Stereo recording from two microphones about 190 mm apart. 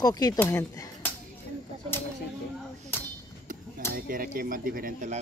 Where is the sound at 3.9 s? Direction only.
50° right (ahead or behind).